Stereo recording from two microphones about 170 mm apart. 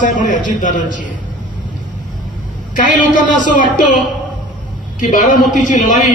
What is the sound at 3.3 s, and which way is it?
Speech, 50° left (ahead or behind).